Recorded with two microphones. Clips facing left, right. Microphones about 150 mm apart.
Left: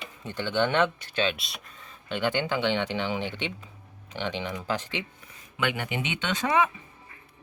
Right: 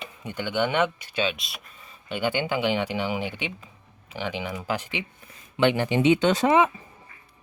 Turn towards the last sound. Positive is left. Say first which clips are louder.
# right 5 dB
turn(degrees=-20)  # may be behind; listen again after turning